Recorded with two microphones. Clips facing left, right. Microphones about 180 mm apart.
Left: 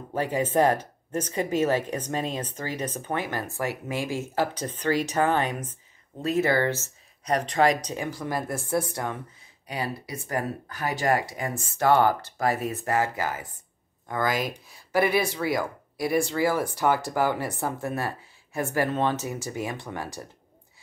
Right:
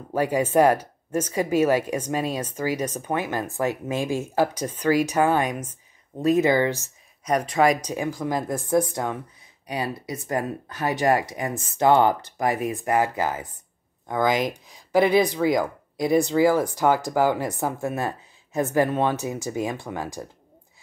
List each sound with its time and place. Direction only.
0.2 s speech: 10° right (ahead or behind)